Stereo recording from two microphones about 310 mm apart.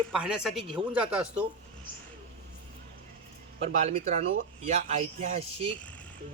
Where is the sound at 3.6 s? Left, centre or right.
Right.